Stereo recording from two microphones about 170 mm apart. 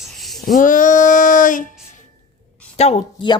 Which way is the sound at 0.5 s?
50° left (ahead or behind).